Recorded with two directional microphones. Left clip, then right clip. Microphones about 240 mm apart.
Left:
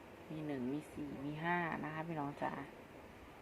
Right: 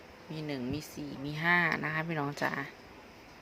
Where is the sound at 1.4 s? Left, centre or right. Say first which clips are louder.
Right 11 dB; right.